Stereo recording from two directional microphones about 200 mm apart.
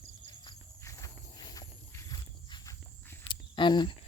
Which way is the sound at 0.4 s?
15° left (ahead or behind).